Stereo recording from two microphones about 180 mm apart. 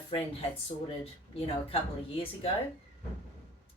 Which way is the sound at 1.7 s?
35° left (ahead or behind).